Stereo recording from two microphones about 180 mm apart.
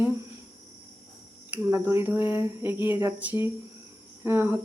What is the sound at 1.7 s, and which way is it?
Speech, 15° right (ahead or behind).